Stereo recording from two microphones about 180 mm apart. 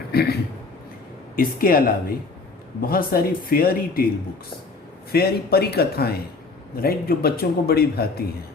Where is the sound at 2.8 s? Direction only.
55° left (ahead or behind).